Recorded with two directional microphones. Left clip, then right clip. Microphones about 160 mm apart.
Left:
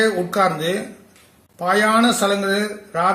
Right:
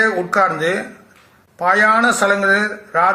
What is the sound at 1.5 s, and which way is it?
A man's voice, 10° left (ahead or behind).